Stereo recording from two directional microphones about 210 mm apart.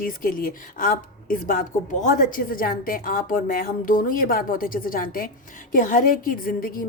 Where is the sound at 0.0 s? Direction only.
40° left (ahead or behind).